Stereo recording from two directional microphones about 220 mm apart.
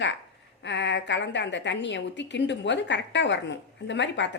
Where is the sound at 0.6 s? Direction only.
55° left (ahead or behind).